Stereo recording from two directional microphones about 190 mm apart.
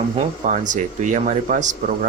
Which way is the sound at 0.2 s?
40° right (ahead or behind).